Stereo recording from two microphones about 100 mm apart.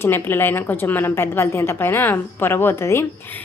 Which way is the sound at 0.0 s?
20° left (ahead or behind).